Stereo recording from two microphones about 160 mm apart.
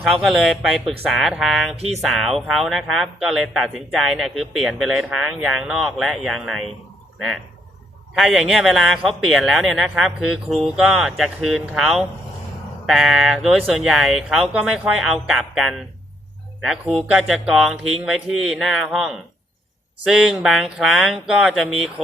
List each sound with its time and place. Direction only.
0.0 s speech: centre (ahead or behind)
1.7 s speech: 40° right (ahead or behind)
2.0 s speech: centre (ahead or behind)
8.1 s speech: centre (ahead or behind)